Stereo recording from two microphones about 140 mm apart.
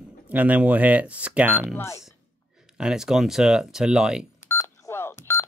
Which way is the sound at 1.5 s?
15° left (ahead or behind).